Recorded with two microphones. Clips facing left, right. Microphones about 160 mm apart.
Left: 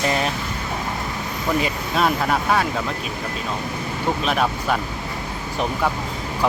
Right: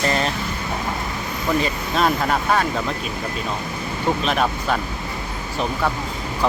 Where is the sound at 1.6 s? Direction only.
5° left (ahead or behind).